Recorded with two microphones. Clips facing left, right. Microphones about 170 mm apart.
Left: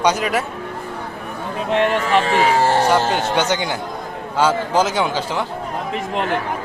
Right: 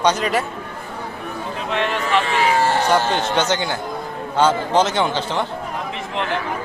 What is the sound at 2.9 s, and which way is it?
A man's voice, 15° left (ahead or behind).